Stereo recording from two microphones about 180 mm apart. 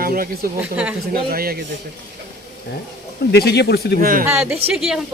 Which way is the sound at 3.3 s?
65° left (ahead or behind).